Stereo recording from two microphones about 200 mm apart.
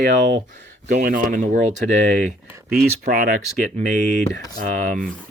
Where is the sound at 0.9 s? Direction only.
45° right (ahead or behind).